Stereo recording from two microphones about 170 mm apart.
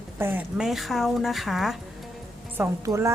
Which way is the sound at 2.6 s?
15° right (ahead or behind).